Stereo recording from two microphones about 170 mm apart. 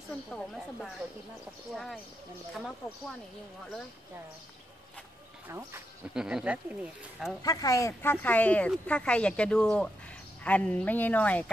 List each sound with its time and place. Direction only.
0.3 s speech: 5° left (ahead or behind)
5.5 s speech: 15° right (ahead or behind)
6.1 s speech: 5° right (ahead or behind)
7.4 s speech: 20° left (ahead or behind)